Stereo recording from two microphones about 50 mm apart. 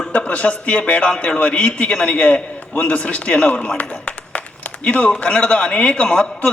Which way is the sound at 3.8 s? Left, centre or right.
Left.